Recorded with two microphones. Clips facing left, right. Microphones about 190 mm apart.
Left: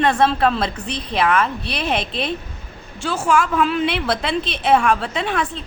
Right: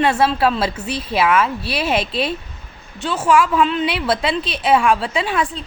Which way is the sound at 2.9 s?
25° left (ahead or behind).